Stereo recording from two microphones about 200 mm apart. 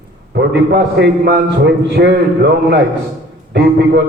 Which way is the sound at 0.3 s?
55° right (ahead or behind).